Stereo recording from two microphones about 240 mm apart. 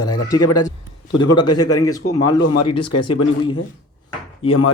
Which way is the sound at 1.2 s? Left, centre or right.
Centre.